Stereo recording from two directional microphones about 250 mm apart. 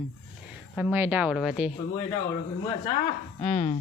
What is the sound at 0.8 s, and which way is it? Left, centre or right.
Speech, centre.